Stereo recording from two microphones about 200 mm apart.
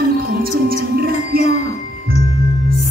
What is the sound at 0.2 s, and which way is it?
Music, 50° right (ahead or behind).